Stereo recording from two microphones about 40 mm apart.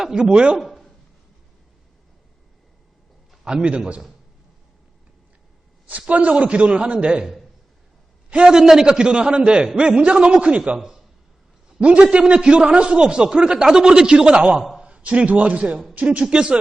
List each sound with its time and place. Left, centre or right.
0.0 s a man's voice: centre
3.4 s a man's voice: right
6.1 s a man's voice: right
8.4 s a man's voice: centre
11.8 s a man's voice: right
16.2 s a man's voice: right